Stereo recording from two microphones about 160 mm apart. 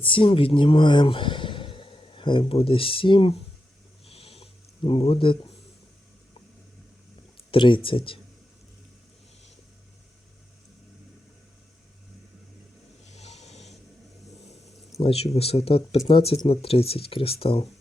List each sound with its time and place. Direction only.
0.0 s speech: 35° left (ahead or behind)
4.0 s a sound: 40° left (ahead or behind)
7.5 s speech: 30° left (ahead or behind)
13.1 s vehicle: 45° left (ahead or behind)
14.9 s speech: 40° left (ahead or behind)